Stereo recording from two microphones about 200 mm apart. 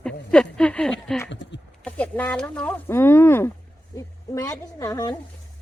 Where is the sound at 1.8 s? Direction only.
5° left (ahead or behind).